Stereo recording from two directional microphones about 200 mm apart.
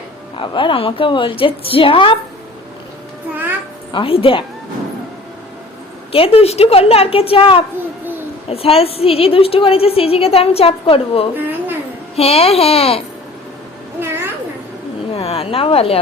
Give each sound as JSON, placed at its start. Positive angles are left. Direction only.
{"t": 0.3, "sound": "a woman's voice", "side_deg": 25}
{"t": 3.9, "sound": "a woman's voice", "side_deg": 25}
{"t": 6.1, "sound": "a woman's voice", "side_deg": 30}
{"t": 11.3, "sound": "a sound", "side_deg": -10}
{"t": 12.1, "sound": "a child's voice", "side_deg": 30}
{"t": 15.1, "sound": "a sound", "side_deg": 30}